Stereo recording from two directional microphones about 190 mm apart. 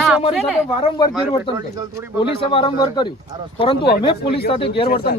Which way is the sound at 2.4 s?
30° left (ahead or behind).